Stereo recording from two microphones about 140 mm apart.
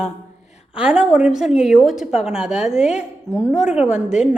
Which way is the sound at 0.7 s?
5° right (ahead or behind).